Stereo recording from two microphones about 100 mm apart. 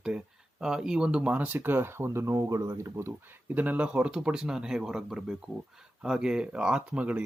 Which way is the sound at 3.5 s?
15° right (ahead or behind).